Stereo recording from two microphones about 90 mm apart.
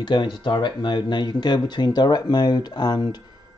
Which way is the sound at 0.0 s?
60° left (ahead or behind).